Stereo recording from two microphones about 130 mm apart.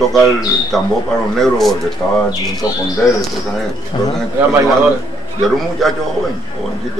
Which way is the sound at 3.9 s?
45° left (ahead or behind).